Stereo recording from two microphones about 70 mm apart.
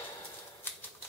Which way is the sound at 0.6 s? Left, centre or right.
Left.